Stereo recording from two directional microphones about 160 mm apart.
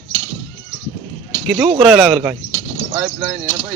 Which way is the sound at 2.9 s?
20° right (ahead or behind).